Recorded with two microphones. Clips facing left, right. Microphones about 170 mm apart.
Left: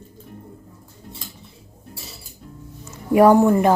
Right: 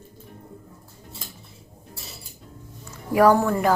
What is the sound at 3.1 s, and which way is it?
Speech, 20° left (ahead or behind).